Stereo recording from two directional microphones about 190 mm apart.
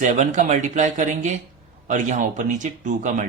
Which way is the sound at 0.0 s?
40° right (ahead or behind).